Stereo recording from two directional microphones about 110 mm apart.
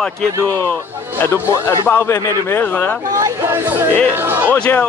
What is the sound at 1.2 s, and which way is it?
Speech, 25° left (ahead or behind).